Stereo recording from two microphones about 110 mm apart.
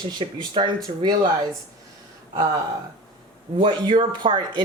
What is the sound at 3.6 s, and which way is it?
Speech, 45° right (ahead or behind).